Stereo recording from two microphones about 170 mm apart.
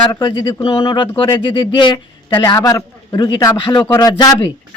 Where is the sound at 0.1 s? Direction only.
30° left (ahead or behind).